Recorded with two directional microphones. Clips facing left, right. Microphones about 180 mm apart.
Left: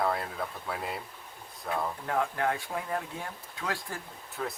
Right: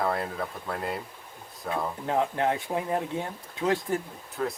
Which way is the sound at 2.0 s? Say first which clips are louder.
Right 5 dB; 20° right (ahead or behind).